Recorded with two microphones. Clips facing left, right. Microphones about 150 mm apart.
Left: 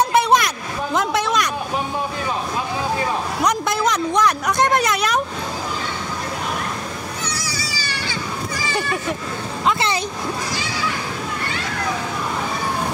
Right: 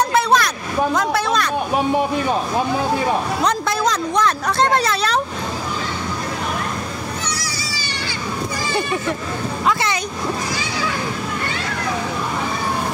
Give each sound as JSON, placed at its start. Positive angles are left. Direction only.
{"t": 0.1, "sound": "a sound", "side_deg": 20}
{"t": 0.9, "sound": "speech", "side_deg": 20}
{"t": 3.4, "sound": "a man's voice", "side_deg": 20}
{"t": 9.7, "sound": "speech", "side_deg": 25}